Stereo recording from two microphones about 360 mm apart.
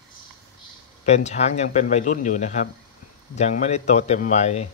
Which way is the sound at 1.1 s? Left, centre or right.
Centre.